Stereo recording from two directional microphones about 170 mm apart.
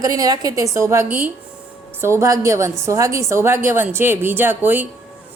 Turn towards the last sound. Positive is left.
turn(degrees=-10)  # may be behind; listen again after turning